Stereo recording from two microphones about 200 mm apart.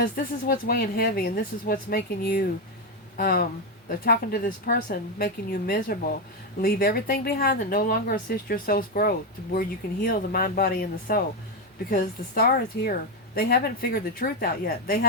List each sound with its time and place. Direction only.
0.2 s speech: 45° left (ahead or behind)